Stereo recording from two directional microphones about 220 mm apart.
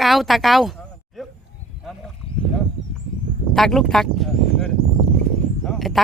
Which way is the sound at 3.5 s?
Centre (ahead or behind).